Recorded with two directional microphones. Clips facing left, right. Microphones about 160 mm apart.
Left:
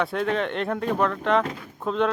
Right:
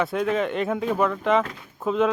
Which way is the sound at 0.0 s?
Centre (ahead or behind).